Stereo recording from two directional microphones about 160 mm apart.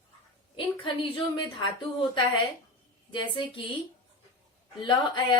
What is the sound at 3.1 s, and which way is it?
Speech, 30° left (ahead or behind).